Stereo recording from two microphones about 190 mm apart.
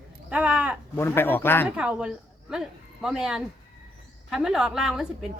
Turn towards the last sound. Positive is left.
turn(degrees=0)  # may be behind; listen again after turning